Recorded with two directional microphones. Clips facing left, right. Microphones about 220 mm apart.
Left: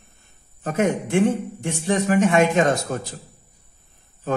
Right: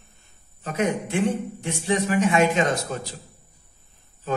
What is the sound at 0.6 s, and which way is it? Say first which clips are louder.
A man's voice: left 3 dB; 50° left (ahead or behind).